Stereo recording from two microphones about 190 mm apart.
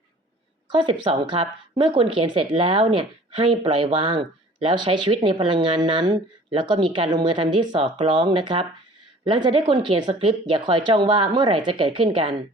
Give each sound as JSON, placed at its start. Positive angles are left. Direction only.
{"t": 0.7, "sound": "speech", "side_deg": -25}